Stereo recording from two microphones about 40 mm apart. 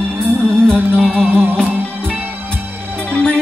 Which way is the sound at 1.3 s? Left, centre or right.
Right.